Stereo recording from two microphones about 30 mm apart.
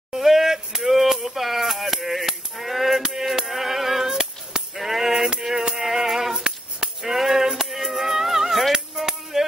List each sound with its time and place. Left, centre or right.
0.1 s a sound: centre
0.8 s music: centre
1.9 s a sound: centre
3.0 s music: centre
3.4 s music: centre
6.3 s music: right
7.0 s a sound: centre
7.7 s music: centre
8.7 s music: right
9.3 s music: centre